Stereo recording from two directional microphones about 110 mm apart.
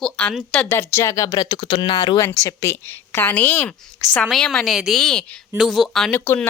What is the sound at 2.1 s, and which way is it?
A woman's voice, 30° left (ahead or behind).